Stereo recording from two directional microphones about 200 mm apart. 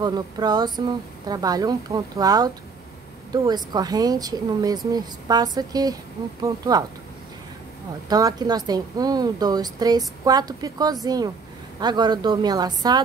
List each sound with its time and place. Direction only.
0.0 s a woman's voice: 20° right (ahead or behind)
8.1 s a woman's voice: 20° right (ahead or behind)